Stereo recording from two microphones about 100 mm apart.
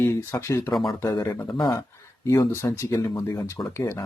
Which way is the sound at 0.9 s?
25° left (ahead or behind).